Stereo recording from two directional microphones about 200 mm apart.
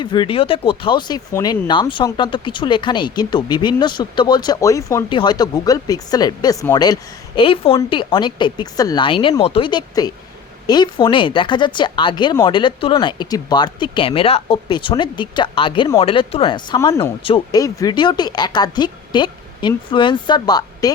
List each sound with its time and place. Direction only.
0.0 s speech: 25° left (ahead or behind)